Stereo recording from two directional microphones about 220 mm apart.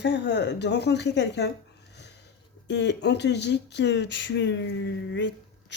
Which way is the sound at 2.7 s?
50° left (ahead or behind).